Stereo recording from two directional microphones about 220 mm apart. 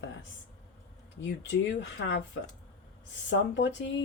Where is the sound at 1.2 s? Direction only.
55° left (ahead or behind).